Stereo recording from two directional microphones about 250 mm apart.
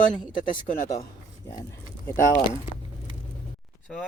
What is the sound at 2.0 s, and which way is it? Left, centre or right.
Speech, centre.